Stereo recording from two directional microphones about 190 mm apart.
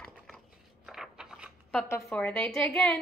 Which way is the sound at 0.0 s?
Centre (ahead or behind).